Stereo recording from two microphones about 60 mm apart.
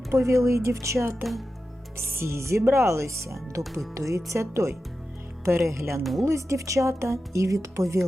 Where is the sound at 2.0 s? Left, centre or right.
Right.